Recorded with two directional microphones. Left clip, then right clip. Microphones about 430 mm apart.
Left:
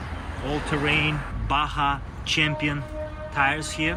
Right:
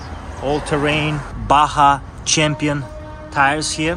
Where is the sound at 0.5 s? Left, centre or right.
Right.